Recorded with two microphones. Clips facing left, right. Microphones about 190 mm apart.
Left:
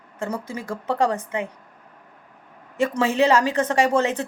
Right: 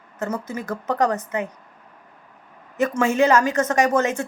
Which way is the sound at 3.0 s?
30° left (ahead or behind).